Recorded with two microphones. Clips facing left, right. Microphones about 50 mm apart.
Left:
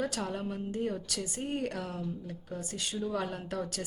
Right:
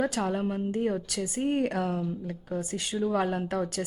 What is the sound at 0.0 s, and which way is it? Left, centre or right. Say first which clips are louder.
A woman's voice: right 6 dB; right.